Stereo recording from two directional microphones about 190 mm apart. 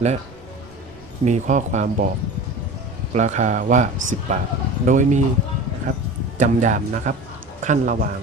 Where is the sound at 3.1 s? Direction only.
40° right (ahead or behind).